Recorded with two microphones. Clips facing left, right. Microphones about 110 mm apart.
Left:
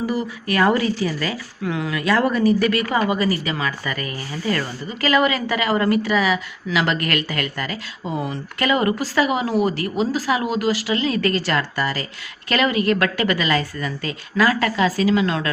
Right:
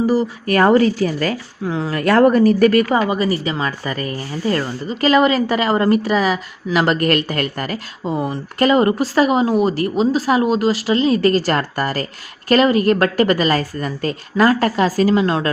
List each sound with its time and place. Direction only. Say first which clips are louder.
0.1 s speech: right 6 dB; 40° right (ahead or behind)
1.6 s speech: right 2 dB; 30° right (ahead or behind)
2.0 s speech: right 7 dB; 50° right (ahead or behind)
2.9 s speech: right 3 dB; 25° right (ahead or behind); by 8.1 s 40° right (ahead or behind)
8.1 s speech: right 4 dB; 25° right (ahead or behind)
8.5 s speech: right 6 dB; 35° right (ahead or behind)